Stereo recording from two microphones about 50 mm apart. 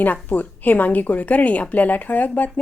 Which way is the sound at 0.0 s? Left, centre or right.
Left.